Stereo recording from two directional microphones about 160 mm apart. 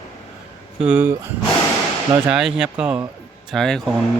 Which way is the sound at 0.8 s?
10° right (ahead or behind).